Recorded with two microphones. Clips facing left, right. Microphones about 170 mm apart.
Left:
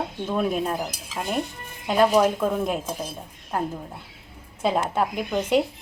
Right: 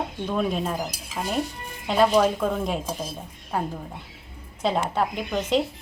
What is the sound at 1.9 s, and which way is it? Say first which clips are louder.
Speech: left 1 dB; 5° left (ahead or behind).